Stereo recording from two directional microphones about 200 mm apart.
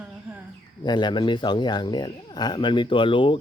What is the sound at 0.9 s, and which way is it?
Speech, 20° left (ahead or behind).